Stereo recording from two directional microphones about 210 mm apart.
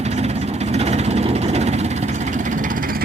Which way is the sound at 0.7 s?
30° right (ahead or behind).